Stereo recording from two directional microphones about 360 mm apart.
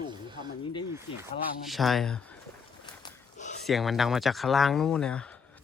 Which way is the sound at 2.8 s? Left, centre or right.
Centre.